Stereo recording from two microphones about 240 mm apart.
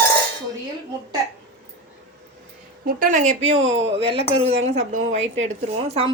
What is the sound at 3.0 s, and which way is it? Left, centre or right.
Speech, right.